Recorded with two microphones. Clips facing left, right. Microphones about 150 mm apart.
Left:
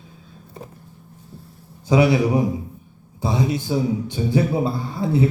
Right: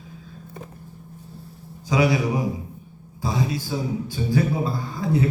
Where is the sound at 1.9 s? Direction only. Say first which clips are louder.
Left 4 dB; 30° left (ahead or behind).